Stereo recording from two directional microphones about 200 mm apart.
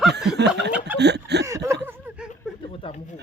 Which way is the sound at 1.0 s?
55° right (ahead or behind).